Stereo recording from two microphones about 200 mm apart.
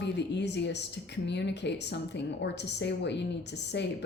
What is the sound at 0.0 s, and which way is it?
A woman's voice, 60° left (ahead or behind).